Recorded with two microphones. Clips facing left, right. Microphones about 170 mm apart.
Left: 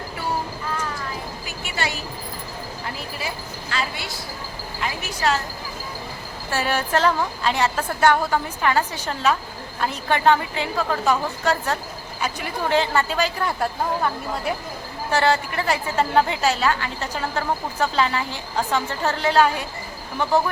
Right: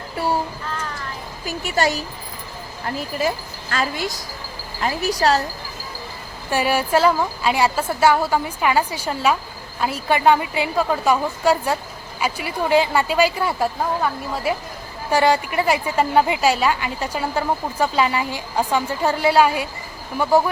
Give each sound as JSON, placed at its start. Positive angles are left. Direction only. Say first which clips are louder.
{"t": 1.5, "sound": "speech", "louder": "right 9 dB", "side_deg": -40}
{"t": 3.2, "sound": "a woman's voice", "louder": "right 8 dB", "side_deg": -45}
{"t": 6.5, "sound": "a woman's voice", "louder": "right 4 dB", "side_deg": -10}